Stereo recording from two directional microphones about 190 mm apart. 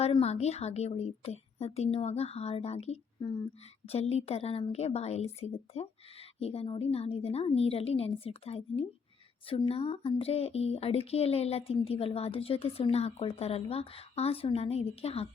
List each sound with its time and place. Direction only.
0.0 s speech: 35° left (ahead or behind)
3.2 s speech: 25° left (ahead or behind)
3.8 s speech: 35° left (ahead or behind)